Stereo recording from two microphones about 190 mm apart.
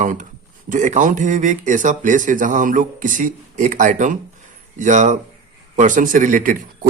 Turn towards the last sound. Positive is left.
turn(degrees=-45)  # may be behind; listen again after turning